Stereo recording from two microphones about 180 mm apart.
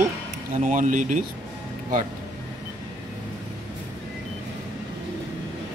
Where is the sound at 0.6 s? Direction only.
45° right (ahead or behind).